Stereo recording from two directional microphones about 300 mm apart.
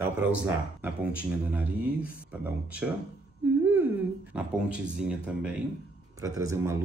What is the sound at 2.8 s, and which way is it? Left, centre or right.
Speech, centre.